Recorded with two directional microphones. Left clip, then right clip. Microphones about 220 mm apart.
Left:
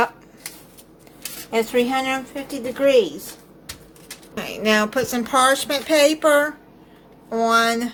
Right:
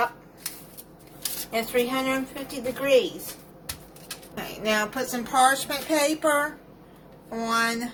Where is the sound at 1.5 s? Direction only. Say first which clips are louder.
Left 6 dB; 40° left (ahead or behind).